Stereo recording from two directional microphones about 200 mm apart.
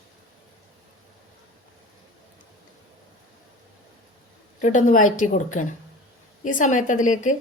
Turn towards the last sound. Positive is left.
turn(degrees=40)  # may be behind; listen again after turning